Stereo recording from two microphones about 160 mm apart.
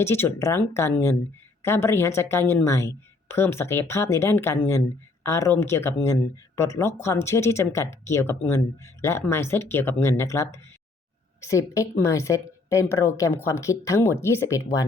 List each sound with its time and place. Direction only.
0.0 s a woman's voice: 15° left (ahead or behind)